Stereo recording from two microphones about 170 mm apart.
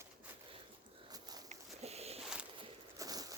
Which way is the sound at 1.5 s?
40° right (ahead or behind).